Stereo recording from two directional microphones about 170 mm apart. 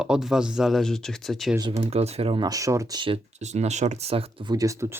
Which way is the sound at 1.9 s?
40° right (ahead or behind).